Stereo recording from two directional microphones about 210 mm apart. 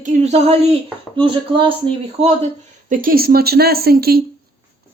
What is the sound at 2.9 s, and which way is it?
Speech, 45° right (ahead or behind).